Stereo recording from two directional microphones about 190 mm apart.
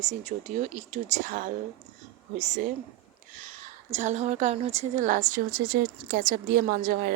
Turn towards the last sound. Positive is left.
turn(degrees=-50)  # may be behind; listen again after turning